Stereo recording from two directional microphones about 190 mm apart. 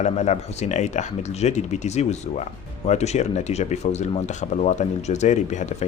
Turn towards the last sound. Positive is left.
turn(degrees=40)  # may be behind; listen again after turning